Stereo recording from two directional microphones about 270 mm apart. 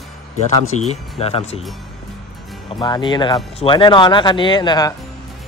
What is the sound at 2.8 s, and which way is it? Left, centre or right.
Speech, centre.